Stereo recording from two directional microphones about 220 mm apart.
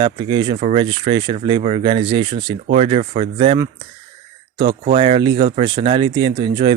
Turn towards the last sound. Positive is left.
turn(degrees=-20)  # may be behind; listen again after turning